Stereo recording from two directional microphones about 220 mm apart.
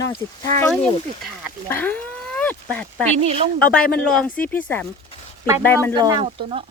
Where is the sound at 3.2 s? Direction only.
25° right (ahead or behind).